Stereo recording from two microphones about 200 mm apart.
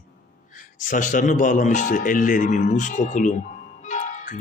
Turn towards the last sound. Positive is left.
turn(degrees=40)  # may be behind; listen again after turning